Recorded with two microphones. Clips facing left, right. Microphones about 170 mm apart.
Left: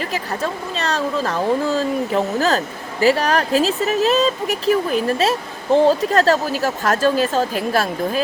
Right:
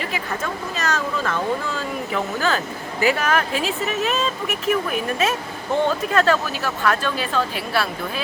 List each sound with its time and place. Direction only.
0.1 s speech: 30° left (ahead or behind)